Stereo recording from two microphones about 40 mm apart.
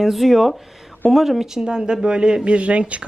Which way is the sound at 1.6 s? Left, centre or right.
Centre.